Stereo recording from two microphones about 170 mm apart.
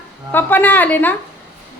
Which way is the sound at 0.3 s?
10° left (ahead or behind).